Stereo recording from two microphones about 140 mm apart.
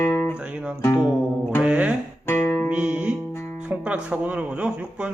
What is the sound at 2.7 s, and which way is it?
Music, 10° right (ahead or behind).